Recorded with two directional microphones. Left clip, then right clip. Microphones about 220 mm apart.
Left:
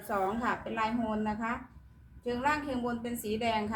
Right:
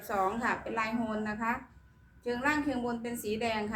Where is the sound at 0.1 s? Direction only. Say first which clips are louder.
Right 1 dB; 15° right (ahead or behind).